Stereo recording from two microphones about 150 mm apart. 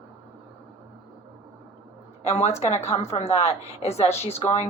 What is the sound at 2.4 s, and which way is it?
Speech, 50° left (ahead or behind).